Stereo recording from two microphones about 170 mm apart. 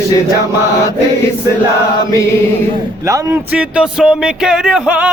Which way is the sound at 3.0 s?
20° right (ahead or behind).